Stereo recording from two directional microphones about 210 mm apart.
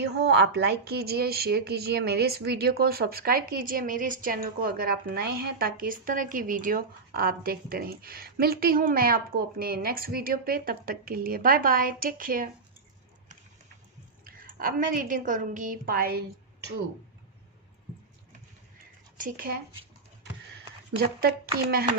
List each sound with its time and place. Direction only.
0.0 s speech: 55° right (ahead or behind)
14.3 s a woman's voice: 40° right (ahead or behind)
19.1 s speech: 40° right (ahead or behind)
21.0 s speech: 45° right (ahead or behind)